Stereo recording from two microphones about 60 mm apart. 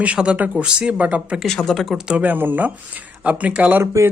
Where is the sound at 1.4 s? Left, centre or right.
Centre.